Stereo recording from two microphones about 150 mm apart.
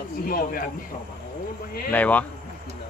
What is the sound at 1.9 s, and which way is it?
Speech, 10° left (ahead or behind).